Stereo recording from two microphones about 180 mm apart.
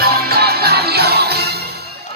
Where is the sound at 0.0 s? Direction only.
60° right (ahead or behind).